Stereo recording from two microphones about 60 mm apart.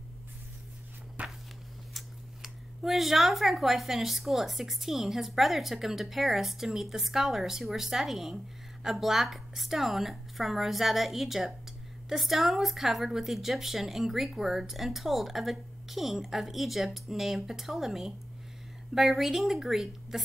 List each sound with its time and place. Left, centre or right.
1.2 s walk: right
2.0 s speech: centre